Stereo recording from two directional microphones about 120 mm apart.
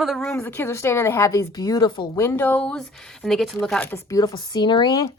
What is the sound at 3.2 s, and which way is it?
Speech, centre (ahead or behind).